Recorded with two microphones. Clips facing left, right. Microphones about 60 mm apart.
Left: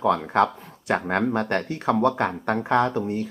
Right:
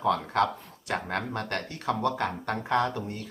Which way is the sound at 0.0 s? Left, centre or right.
Left.